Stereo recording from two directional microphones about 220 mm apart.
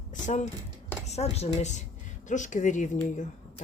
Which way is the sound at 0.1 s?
35° left (ahead or behind).